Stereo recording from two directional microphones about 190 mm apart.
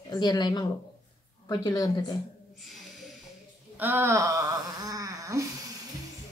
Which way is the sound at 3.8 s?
10° right (ahead or behind).